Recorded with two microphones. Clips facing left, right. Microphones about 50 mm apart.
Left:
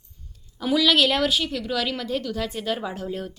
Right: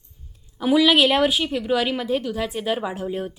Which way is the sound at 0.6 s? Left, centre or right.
Centre.